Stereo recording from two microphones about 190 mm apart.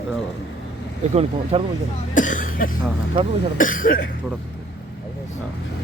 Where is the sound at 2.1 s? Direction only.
40° left (ahead or behind).